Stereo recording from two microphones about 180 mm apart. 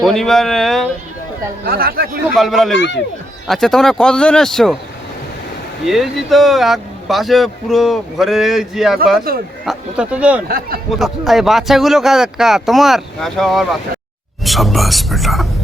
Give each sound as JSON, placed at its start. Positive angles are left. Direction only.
{"t": 0.0, "sound": "speech", "side_deg": 0}
{"t": 1.6, "sound": "speech", "side_deg": -55}
{"t": 2.3, "sound": "speech", "side_deg": 0}
{"t": 2.7, "sound": "speech", "side_deg": 80}
{"t": 3.4, "sound": "speech", "side_deg": 0}
{"t": 5.8, "sound": "speech", "side_deg": 0}